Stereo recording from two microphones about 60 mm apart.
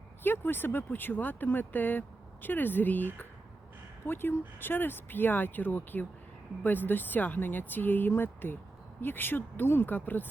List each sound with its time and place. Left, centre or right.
0.2 s speech: left